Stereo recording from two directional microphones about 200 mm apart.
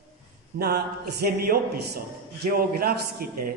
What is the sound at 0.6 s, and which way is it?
Speech, 50° right (ahead or behind).